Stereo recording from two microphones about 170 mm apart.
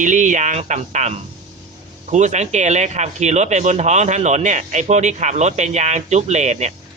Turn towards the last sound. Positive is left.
turn(degrees=-40)  # may be behind; listen again after turning